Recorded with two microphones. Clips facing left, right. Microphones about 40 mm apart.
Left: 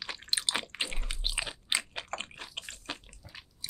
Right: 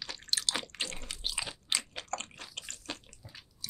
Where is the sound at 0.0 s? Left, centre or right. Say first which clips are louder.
Left 1 dB; left.